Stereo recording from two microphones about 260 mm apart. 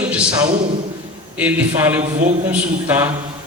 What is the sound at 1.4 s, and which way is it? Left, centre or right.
A man's voice, centre.